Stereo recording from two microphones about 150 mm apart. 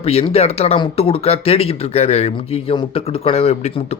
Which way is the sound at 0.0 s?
45° left (ahead or behind).